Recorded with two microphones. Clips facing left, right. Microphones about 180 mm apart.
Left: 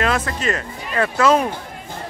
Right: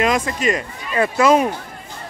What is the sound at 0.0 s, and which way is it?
Speech, 10° right (ahead or behind).